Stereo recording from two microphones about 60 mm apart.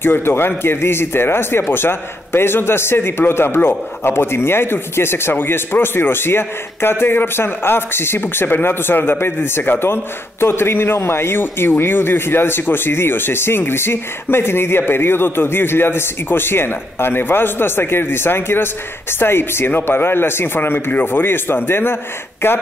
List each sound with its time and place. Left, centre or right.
0.0 s speech: left